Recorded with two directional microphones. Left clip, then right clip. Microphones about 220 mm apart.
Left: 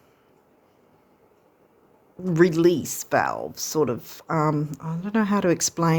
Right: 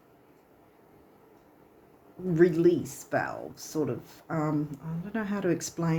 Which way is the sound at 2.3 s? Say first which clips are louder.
Left 4 dB; 50° left (ahead or behind).